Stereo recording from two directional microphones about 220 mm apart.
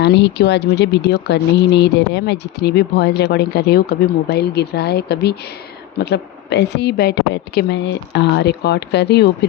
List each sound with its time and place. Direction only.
0.0 s speech: 50° left (ahead or behind)